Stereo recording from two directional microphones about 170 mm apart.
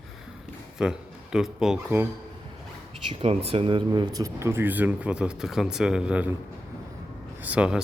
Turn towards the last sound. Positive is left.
turn(degrees=-5)  # may be behind; listen again after turning